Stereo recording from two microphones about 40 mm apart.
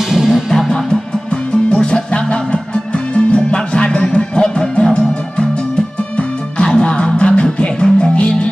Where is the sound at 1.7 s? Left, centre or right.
Left.